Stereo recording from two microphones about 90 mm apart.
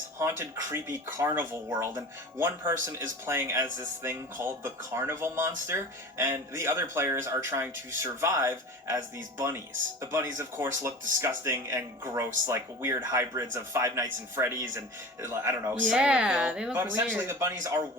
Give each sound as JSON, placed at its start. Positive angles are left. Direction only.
{"t": 0.2, "sound": "speech", "side_deg": -30}
{"t": 15.9, "sound": "a woman's voice", "side_deg": -10}
{"t": 17.2, "sound": "speech", "side_deg": -30}